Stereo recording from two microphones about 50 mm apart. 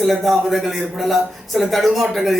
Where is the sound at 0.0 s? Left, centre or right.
Centre.